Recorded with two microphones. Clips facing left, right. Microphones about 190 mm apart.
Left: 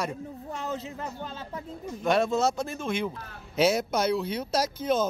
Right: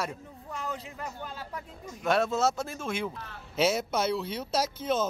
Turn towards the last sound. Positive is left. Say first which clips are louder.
# left 2 dB
turn(degrees=-5)  # may be behind; listen again after turning